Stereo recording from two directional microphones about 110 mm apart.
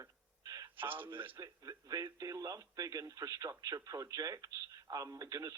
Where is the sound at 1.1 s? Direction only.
50° right (ahead or behind).